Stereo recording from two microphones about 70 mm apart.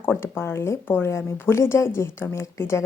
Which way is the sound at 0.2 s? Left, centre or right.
Left.